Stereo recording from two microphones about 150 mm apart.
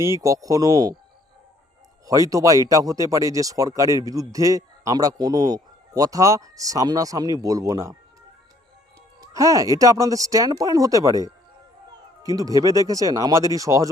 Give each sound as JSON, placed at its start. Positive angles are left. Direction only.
{"t": 0.0, "sound": "speech", "side_deg": -20}
{"t": 2.0, "sound": "speech", "side_deg": -25}
{"t": 9.2, "sound": "speech", "side_deg": -20}
{"t": 12.2, "sound": "speech", "side_deg": -25}